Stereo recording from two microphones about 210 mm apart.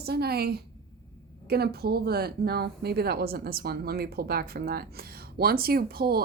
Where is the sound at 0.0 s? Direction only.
50° right (ahead or behind).